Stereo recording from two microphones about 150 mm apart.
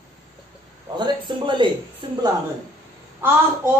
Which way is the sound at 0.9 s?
30° right (ahead or behind).